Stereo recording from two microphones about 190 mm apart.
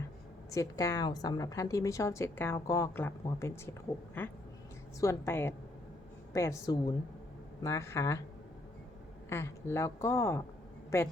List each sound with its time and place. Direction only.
0.5 s a woman's voice: 15° left (ahead or behind)
9.3 s a woman's voice: 15° left (ahead or behind)